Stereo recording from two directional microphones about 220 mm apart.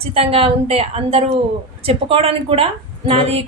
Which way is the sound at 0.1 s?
25° right (ahead or behind).